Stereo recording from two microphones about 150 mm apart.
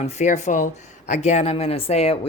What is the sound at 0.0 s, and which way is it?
Speech, 50° left (ahead or behind).